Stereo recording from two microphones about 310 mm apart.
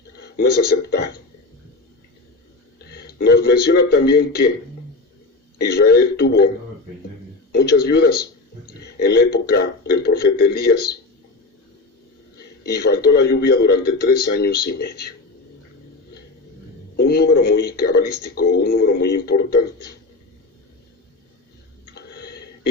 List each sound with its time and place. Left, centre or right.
0.2 s speech: left
2.9 s speech: left
5.5 s speech: left
7.5 s speech: left
12.6 s speech: left
17.0 s speech: left
21.9 s a sound: left